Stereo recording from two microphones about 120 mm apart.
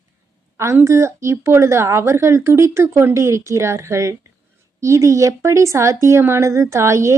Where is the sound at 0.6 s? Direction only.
20° right (ahead or behind).